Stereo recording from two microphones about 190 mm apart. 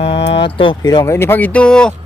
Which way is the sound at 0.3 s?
25° left (ahead or behind).